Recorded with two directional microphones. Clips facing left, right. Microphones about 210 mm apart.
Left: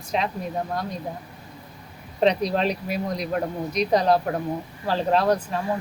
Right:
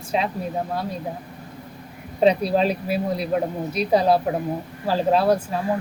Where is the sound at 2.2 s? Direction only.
5° right (ahead or behind).